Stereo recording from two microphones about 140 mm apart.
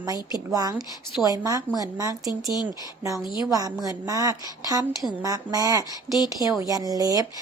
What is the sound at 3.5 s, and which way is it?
Speech, 25° right (ahead or behind).